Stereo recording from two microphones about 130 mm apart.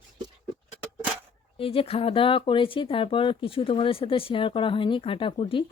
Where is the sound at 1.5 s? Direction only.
45° left (ahead or behind).